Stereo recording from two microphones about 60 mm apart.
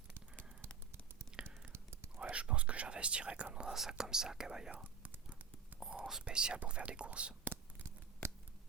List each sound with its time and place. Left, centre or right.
1.7 s whispering: right
2.3 s whispering: centre
3.8 s speech: centre
4.7 s whispering: right
5.9 s whispering: centre
6.2 s speech: centre
7.4 s a sound: right